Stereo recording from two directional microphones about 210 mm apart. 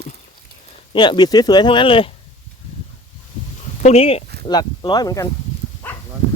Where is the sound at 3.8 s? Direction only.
30° left (ahead or behind).